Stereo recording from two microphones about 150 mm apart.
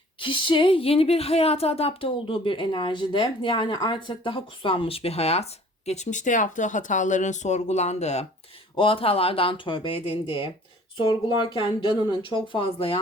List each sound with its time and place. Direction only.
0.2 s speech: 35° left (ahead or behind)
8.7 s speech: 35° left (ahead or behind)